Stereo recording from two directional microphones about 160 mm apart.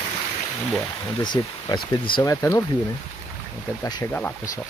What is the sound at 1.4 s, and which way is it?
Speech, 20° left (ahead or behind).